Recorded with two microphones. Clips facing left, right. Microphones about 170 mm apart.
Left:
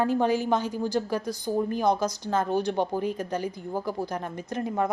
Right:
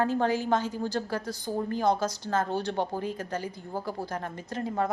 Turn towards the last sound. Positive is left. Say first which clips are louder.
# left 2 dB
turn(degrees=20)  # may be behind; listen again after turning